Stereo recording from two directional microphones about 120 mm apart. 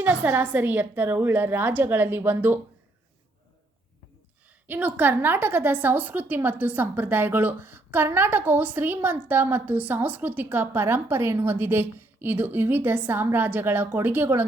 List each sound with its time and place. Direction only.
0.0 s a woman's voice: 15° right (ahead or behind)
4.6 s a woman's voice: 15° right (ahead or behind)